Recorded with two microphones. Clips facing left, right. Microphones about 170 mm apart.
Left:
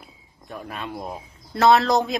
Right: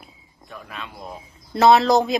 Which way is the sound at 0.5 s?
45° left (ahead or behind).